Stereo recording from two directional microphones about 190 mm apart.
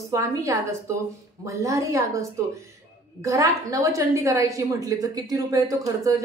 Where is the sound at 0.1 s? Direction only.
15° right (ahead or behind).